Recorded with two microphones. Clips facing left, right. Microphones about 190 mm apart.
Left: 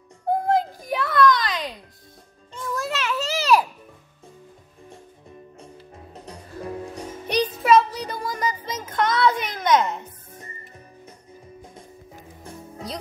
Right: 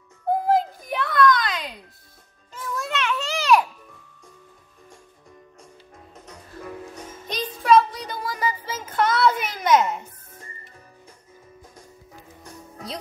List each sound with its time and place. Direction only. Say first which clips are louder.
0.5 s music: even; centre (ahead or behind)
2.5 s children playing: left 1 dB; centre (ahead or behind)
6.1 s music: left 4 dB; 30° left (ahead or behind)
7.6 s child singing: right 2 dB; centre (ahead or behind)
12.4 s music: left 4 dB; 25° left (ahead or behind)